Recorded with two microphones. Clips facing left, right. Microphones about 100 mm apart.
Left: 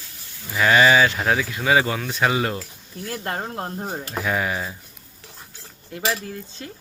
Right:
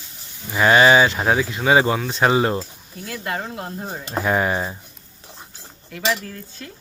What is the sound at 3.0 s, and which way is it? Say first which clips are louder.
Speech: right 1 dB; 40° left (ahead or behind).